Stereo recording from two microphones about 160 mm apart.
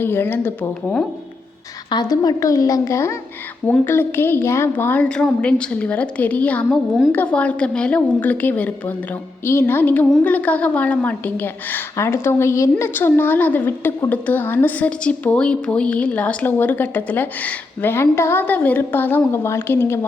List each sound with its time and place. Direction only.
0.0 s a woman's voice: 15° left (ahead or behind)
1.9 s a woman's voice: 25° left (ahead or behind)